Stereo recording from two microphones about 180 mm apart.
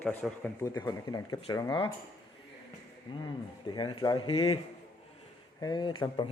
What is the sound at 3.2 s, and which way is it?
A man's voice, 25° left (ahead or behind).